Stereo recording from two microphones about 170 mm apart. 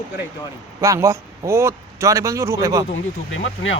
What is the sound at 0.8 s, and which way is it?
A man's voice, 15° right (ahead or behind).